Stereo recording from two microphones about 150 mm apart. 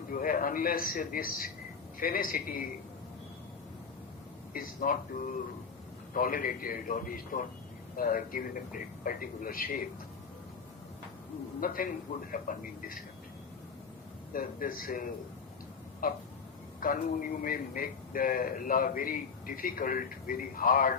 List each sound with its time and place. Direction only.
0.1 s a man's voice: 65° left (ahead or behind)
4.5 s a man's voice: 65° left (ahead or behind)
11.6 s a man's voice: 70° left (ahead or behind)
14.3 s a man's voice: 70° left (ahead or behind)
16.0 s a man's voice: 70° left (ahead or behind)